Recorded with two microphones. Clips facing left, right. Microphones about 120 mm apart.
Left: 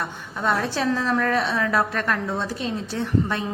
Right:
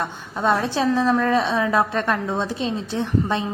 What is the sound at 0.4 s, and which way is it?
A woman's voice, 20° right (ahead or behind).